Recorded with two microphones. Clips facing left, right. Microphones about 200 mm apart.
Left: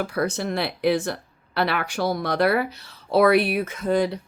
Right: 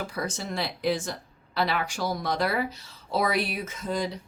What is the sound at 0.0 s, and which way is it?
Speech, 65° left (ahead or behind).